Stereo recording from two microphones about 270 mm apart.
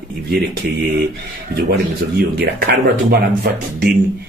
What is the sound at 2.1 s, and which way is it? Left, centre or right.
Speech, right.